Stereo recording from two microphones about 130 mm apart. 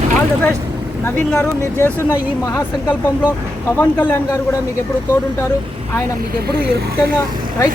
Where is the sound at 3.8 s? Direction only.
15° left (ahead or behind).